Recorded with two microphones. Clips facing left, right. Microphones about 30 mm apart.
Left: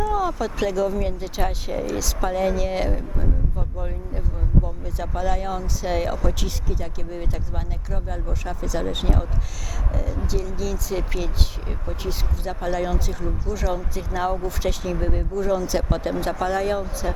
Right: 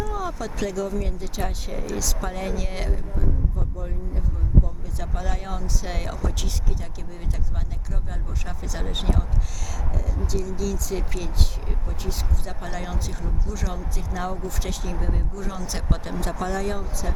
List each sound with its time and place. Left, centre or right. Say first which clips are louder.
0.2 s speech: left 5 dB; centre
3.8 s speech: left 2 dB; left
4.9 s speech: left 7 dB; centre
8.1 s speech: left 6 dB; centre